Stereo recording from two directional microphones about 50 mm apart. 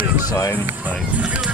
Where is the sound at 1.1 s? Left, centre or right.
Right.